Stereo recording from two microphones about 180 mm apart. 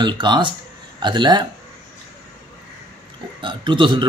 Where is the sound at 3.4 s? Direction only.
25° right (ahead or behind).